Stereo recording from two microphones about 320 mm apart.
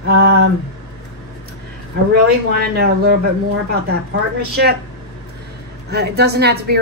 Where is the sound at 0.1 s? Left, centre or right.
Right.